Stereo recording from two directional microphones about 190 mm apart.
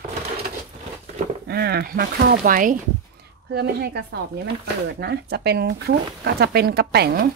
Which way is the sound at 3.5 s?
60° right (ahead or behind).